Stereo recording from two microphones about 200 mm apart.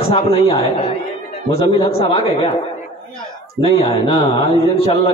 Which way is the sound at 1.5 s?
30° left (ahead or behind).